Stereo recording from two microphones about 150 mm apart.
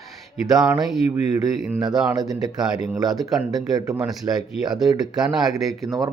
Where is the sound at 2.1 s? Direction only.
25° right (ahead or behind).